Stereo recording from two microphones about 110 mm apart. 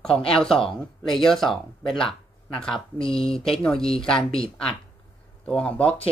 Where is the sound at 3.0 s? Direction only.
55° left (ahead or behind).